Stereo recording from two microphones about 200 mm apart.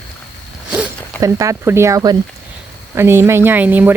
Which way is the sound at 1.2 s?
15° right (ahead or behind).